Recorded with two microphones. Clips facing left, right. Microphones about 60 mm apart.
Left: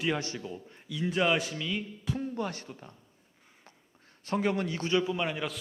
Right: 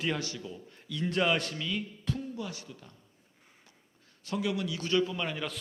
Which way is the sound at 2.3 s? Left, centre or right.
Left.